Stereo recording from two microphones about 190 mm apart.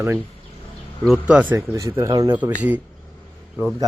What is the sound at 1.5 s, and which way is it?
Speech, 15° right (ahead or behind).